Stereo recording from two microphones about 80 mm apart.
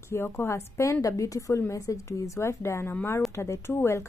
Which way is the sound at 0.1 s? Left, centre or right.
Left.